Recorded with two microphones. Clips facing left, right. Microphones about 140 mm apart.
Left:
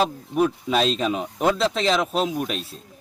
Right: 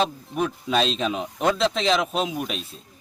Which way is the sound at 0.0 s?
5° left (ahead or behind).